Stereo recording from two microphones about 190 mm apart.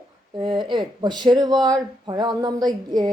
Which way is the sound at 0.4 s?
25° right (ahead or behind).